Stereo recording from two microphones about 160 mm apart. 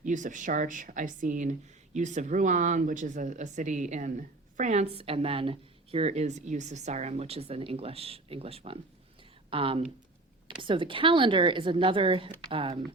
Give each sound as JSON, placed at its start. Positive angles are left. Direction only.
{"t": 0.0, "sound": "a woman's voice", "side_deg": -50}